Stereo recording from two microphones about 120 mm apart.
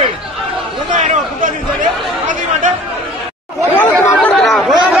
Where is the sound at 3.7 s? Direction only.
15° left (ahead or behind).